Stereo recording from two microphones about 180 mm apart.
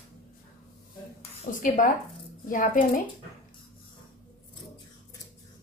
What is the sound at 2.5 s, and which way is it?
Speech, 50° left (ahead or behind).